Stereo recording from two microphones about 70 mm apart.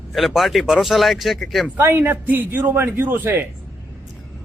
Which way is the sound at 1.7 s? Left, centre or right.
Right.